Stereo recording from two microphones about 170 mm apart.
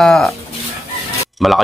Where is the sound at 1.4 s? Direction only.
Centre (ahead or behind).